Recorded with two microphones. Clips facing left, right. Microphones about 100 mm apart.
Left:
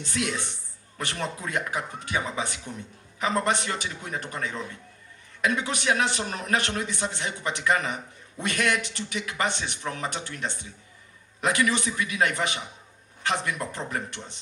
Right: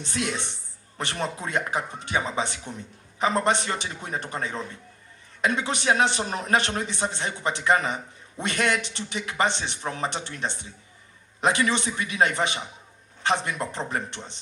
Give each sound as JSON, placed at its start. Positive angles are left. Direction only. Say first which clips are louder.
{"t": 0.0, "sound": "a man's voice", "louder": "even", "side_deg": -25}